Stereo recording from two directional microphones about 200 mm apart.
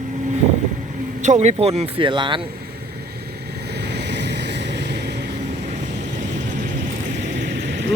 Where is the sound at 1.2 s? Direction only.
35° right (ahead or behind).